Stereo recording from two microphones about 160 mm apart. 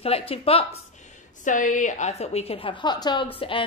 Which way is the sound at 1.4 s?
55° left (ahead or behind).